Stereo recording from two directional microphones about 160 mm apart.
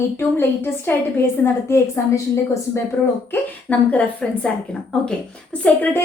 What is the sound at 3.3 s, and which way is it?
A woman's voice, 10° left (ahead or behind).